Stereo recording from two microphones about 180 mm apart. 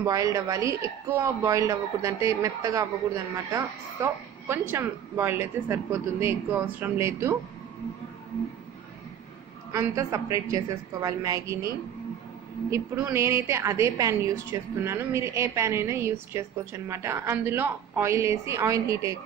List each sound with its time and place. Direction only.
0.0 s a woman's voice: 20° right (ahead or behind)
9.7 s a woman's voice: 20° right (ahead or behind)
12.9 s a woman's voice: 15° right (ahead or behind)